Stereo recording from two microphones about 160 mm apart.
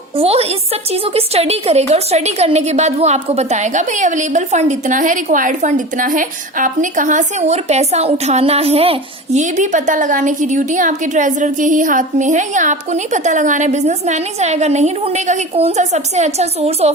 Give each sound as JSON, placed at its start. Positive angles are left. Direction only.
{"t": 0.2, "sound": "a woman's voice", "side_deg": -40}